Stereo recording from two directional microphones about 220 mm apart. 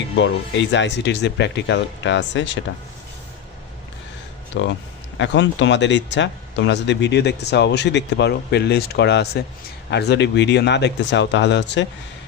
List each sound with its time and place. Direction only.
0.2 s speech: 55° left (ahead or behind)
4.5 s speech: 55° left (ahead or behind)